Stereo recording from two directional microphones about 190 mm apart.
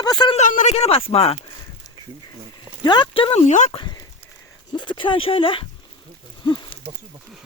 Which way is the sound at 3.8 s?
25° left (ahead or behind).